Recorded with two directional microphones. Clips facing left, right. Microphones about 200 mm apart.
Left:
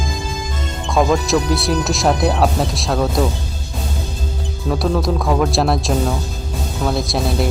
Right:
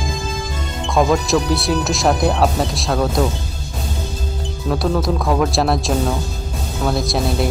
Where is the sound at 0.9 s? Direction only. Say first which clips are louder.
Even; centre (ahead or behind).